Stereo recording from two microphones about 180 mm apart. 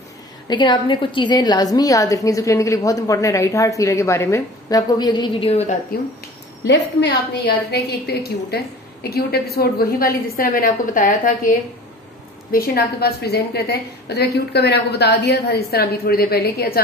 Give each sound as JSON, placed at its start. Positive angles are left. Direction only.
{"t": 0.5, "sound": "a woman's voice", "side_deg": 25}
{"t": 6.6, "sound": "a woman's voice", "side_deg": 70}